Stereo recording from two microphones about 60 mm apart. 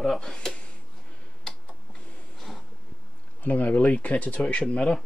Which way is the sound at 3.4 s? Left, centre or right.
Left.